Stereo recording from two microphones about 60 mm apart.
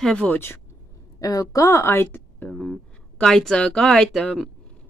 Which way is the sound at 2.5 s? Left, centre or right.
Centre.